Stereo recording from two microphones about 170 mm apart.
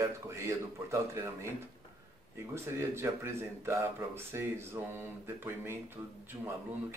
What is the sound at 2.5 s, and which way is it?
Speech, 15° right (ahead or behind).